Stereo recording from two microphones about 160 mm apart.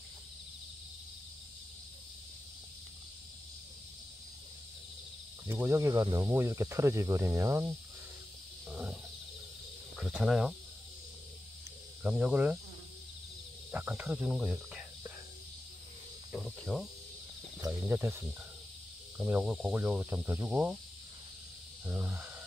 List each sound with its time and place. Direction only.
5.5 s speech: 15° right (ahead or behind)
8.6 s wild animals: 5° right (ahead or behind)
9.9 s speech: centre (ahead or behind)
12.0 s speech: 5° right (ahead or behind)
13.7 s speech: 5° right (ahead or behind)
16.3 s cricket: centre (ahead or behind)
17.6 s speech: 15° right (ahead or behind)
21.8 s speech: 10° right (ahead or behind)